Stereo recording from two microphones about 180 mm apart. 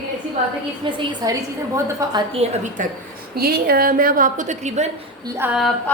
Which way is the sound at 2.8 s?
45° right (ahead or behind).